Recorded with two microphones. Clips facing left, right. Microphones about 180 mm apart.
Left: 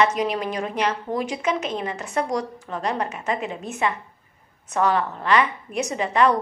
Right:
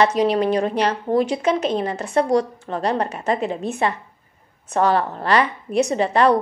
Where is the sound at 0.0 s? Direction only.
30° right (ahead or behind).